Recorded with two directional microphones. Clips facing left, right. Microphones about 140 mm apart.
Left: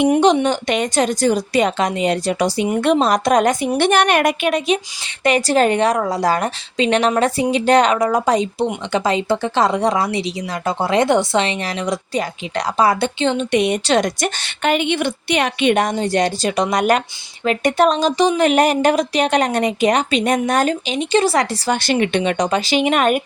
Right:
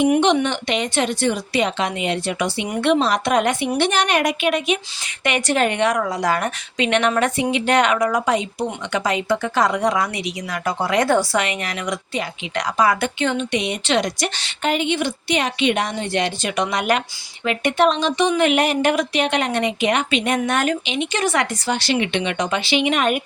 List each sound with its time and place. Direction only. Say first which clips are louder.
0.1 s speech: left 3 dB; 35° left (ahead or behind)
3.8 s a woman's voice: left 5 dB; 55° left (ahead or behind); by 13.4 s 30° left (ahead or behind)
13.5 s a woman's voice: left 5 dB; 50° left (ahead or behind); by 21.4 s 30° left (ahead or behind)
21.7 s a woman's voice: left 4 dB; 50° left (ahead or behind)